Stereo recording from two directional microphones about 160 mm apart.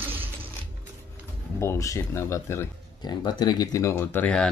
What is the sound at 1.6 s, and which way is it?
Speech, 20° left (ahead or behind).